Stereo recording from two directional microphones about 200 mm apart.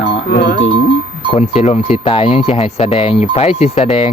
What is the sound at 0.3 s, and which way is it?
Speech, 50° left (ahead or behind).